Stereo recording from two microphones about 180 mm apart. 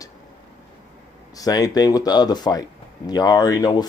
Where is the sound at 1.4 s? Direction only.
20° left (ahead or behind).